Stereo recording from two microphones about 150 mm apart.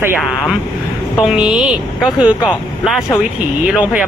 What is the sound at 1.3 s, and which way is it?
Speech, 5° right (ahead or behind).